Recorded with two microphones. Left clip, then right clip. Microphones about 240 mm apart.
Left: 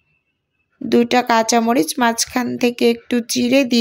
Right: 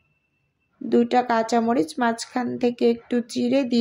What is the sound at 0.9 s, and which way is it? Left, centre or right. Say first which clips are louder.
Speech: left 5 dB; left.